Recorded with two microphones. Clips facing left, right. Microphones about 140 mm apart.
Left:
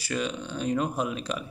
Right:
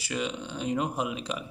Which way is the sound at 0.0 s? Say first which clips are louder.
Left 2 dB; 20° right (ahead or behind).